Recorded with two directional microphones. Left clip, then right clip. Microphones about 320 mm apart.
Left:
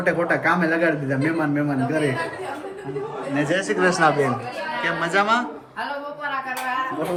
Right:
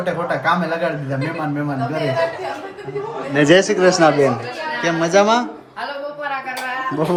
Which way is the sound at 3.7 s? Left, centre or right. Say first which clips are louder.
Right 5 dB; centre.